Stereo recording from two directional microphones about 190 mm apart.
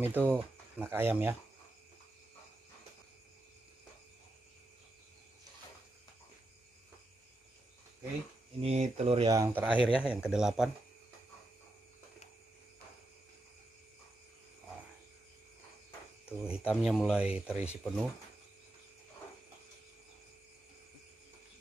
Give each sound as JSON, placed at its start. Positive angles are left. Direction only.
{"t": 0.0, "sound": "speech", "side_deg": -10}
{"t": 8.5, "sound": "speech", "side_deg": -35}
{"t": 9.4, "sound": "speech", "side_deg": -10}
{"t": 16.3, "sound": "speech", "side_deg": -5}